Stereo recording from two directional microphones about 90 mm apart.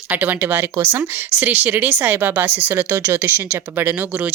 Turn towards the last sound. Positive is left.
turn(degrees=-15)  # may be behind; listen again after turning